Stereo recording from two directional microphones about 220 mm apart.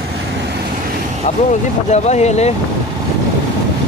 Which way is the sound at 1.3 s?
30° left (ahead or behind).